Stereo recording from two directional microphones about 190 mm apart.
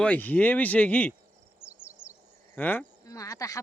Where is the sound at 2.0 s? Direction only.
10° left (ahead or behind).